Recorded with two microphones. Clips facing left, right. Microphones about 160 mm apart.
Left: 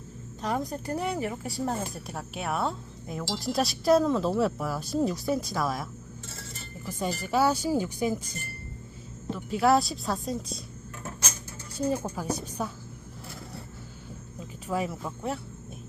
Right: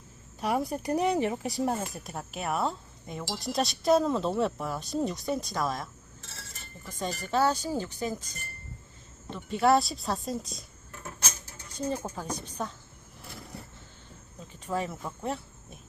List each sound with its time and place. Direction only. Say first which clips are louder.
0.4 s speech: right 2 dB; 10° right (ahead or behind)
1.9 s speech: left 1 dB; centre (ahead or behind)
11.8 s speech: left 4 dB; 10° left (ahead or behind)
14.3 s speech: left 2 dB; 10° left (ahead or behind)